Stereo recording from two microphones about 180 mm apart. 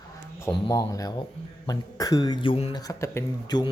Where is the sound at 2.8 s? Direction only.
20° left (ahead or behind).